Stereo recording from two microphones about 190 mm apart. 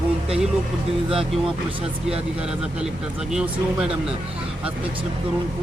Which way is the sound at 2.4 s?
5° right (ahead or behind).